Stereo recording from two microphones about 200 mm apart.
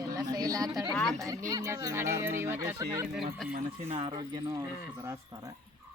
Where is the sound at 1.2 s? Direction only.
15° right (ahead or behind).